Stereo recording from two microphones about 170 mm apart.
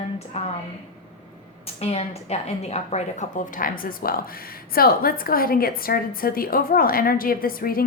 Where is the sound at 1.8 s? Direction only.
40° left (ahead or behind).